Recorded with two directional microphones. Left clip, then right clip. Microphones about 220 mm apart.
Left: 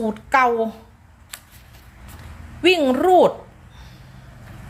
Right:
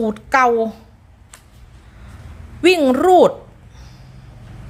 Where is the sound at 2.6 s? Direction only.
20° right (ahead or behind).